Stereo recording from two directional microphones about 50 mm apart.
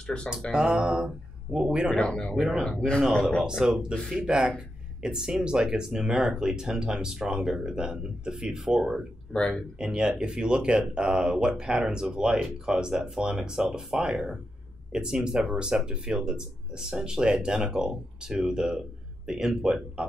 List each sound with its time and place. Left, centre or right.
0.0 s speech: centre
0.5 s speech: centre
2.0 s speech: centre
3.4 s speech: centre
9.3 s speech: centre
9.8 s speech: centre
14.0 s speech: centre